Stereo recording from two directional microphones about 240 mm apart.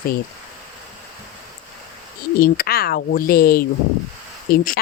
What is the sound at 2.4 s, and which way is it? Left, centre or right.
Speech, left.